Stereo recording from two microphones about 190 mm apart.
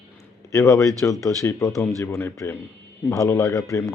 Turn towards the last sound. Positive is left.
turn(degrees=15)  # may be behind; listen again after turning